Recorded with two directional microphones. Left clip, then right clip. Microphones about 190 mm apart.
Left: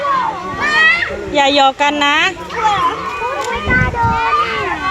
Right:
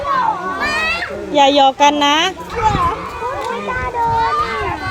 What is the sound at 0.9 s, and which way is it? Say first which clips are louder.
A child's voice: even; 20° right (ahead or behind).